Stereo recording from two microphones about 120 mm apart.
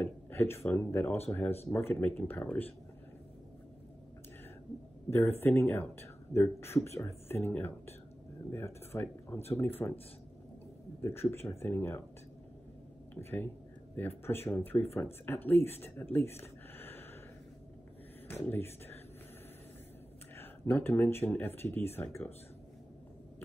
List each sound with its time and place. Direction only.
0.0 s speech: 20° left (ahead or behind)
5.4 s speech: 20° left (ahead or behind)
11.0 s speech: 20° left (ahead or behind)
13.1 s speech: 15° left (ahead or behind)
16.3 s a sound: 20° left (ahead or behind)
18.3 s speech: 15° left (ahead or behind)
20.3 s speech: 15° left (ahead or behind)